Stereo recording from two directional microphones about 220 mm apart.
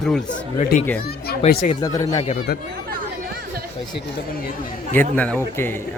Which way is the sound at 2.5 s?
45° left (ahead or behind).